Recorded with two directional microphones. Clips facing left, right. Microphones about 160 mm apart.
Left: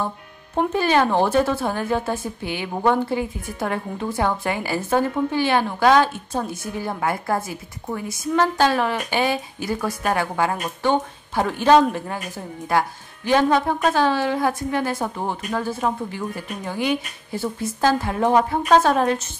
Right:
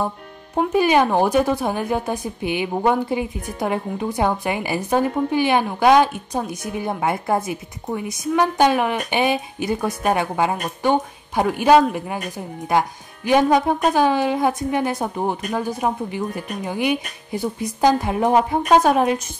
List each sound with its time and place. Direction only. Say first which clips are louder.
0.6 s a woman's voice: right 2 dB; 15° right (ahead or behind)